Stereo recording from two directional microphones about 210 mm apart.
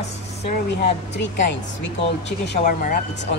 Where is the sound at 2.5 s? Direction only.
40° left (ahead or behind).